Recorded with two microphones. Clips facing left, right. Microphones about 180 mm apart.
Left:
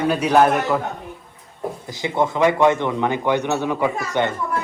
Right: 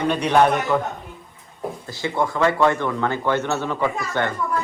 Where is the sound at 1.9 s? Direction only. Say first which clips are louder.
Left 2 dB; 15° left (ahead or behind).